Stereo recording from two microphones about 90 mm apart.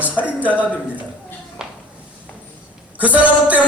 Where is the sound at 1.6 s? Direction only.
10° right (ahead or behind).